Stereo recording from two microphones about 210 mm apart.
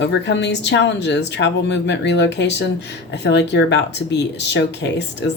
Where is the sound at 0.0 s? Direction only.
60° left (ahead or behind).